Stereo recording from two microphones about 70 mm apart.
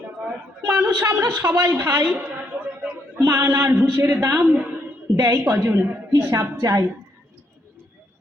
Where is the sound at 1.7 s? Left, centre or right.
Right.